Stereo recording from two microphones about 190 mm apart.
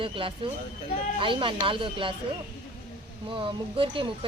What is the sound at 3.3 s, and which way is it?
Speech, 25° right (ahead or behind).